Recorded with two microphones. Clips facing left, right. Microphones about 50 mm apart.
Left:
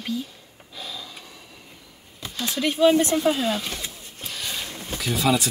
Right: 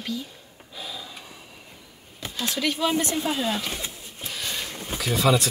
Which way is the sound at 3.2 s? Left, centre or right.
Centre.